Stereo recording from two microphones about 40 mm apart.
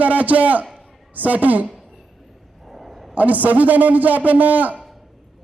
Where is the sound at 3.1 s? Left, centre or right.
Right.